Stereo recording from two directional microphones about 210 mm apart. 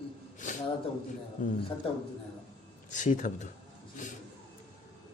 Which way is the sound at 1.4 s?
40° left (ahead or behind).